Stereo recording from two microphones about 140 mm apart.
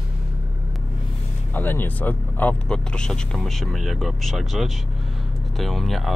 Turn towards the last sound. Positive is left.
turn(degrees=0)  # may be behind; listen again after turning